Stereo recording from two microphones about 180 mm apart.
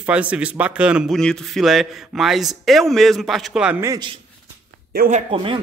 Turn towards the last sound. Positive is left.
turn(degrees=-40)  # may be behind; listen again after turning